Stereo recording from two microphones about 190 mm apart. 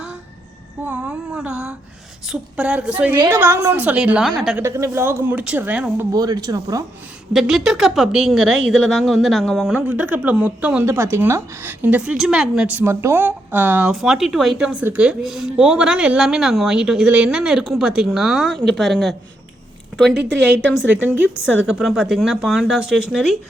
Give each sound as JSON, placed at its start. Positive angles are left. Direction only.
{"t": 0.9, "sound": "a woman's voice", "side_deg": -10}
{"t": 4.6, "sound": "a woman's voice", "side_deg": -15}
{"t": 6.1, "sound": "speech", "side_deg": -20}
{"t": 7.3, "sound": "speech", "side_deg": 0}
{"t": 20.8, "sound": "a woman's voice", "side_deg": -10}